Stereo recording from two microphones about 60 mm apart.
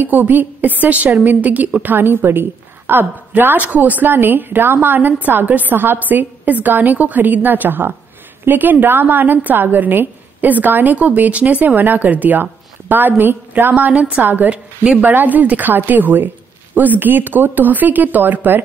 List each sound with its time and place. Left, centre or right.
0.0 s a woman's voice: right